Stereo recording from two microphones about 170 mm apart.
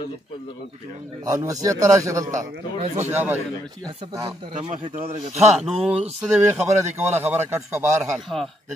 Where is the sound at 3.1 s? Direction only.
15° right (ahead or behind).